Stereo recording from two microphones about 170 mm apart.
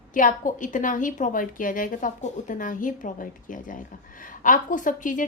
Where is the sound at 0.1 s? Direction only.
50° left (ahead or behind).